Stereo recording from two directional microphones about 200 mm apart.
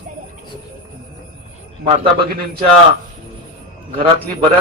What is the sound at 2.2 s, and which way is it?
Speech, 50° right (ahead or behind).